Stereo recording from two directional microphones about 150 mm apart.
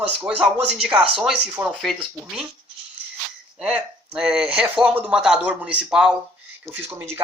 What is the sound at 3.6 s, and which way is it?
Speech, 5° right (ahead or behind).